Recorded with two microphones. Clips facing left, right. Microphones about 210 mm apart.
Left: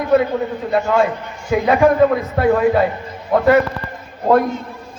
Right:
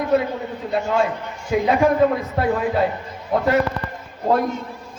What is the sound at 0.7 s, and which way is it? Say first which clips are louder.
A man's voice: left 4 dB; 70° left (ahead or behind).